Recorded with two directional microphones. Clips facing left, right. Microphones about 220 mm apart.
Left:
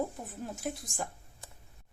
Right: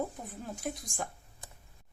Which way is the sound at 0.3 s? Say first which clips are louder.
Left 1 dB; 5° left (ahead or behind).